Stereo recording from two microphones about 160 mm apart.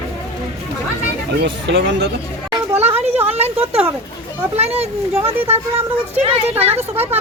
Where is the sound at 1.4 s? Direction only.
90° right.